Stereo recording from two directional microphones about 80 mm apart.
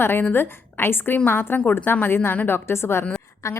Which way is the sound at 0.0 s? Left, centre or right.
Left.